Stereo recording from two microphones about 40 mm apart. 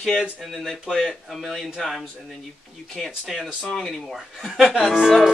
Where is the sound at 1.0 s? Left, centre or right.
Centre.